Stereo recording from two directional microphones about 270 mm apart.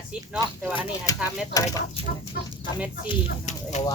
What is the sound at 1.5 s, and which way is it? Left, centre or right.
Speech, centre.